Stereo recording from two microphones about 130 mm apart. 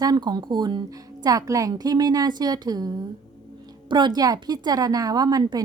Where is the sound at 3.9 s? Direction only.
35° right (ahead or behind).